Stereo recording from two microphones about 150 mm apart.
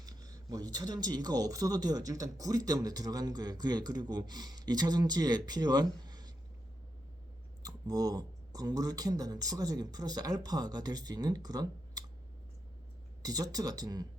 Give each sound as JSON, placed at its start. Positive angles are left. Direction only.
{"t": 0.0, "sound": "speech", "side_deg": -25}
{"t": 7.6, "sound": "speech", "side_deg": -25}
{"t": 13.2, "sound": "speech", "side_deg": -25}